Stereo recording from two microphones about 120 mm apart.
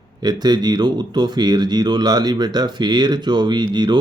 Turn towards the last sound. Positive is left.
turn(degrees=-35)  # may be behind; listen again after turning